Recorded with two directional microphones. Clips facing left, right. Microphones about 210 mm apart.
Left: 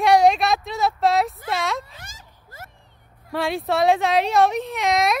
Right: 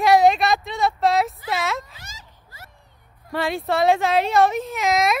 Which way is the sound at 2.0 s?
50° left (ahead or behind).